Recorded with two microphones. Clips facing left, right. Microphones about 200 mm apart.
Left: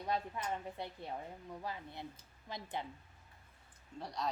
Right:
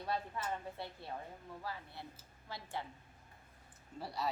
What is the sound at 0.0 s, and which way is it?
Speech, 15° left (ahead or behind).